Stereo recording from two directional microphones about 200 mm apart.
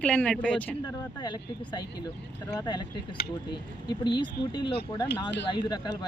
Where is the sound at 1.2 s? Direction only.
20° left (ahead or behind).